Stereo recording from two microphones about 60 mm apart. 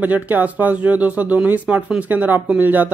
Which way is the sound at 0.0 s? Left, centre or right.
Right.